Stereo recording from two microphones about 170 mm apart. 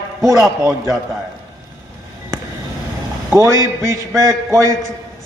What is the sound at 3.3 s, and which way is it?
A man's voice, 15° right (ahead or behind).